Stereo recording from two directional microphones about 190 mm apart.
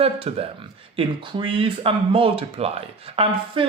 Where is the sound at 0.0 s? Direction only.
30° right (ahead or behind).